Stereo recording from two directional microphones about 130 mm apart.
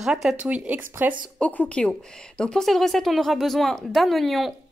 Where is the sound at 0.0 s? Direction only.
5° right (ahead or behind).